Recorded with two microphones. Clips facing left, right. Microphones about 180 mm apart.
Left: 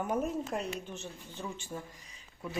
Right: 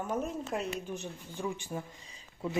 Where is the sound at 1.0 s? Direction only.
15° right (ahead or behind).